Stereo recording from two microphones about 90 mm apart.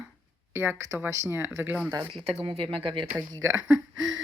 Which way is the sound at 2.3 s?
90° right.